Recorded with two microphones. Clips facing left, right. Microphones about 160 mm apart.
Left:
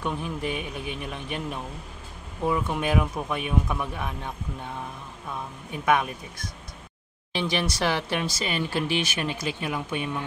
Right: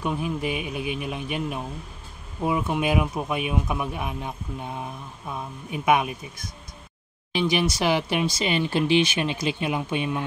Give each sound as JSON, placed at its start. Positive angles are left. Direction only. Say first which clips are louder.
{"t": 0.0, "sound": "speech", "louder": "right 3 dB", "side_deg": -10}
{"t": 5.7, "sound": "speech", "louder": "right 2 dB", "side_deg": -10}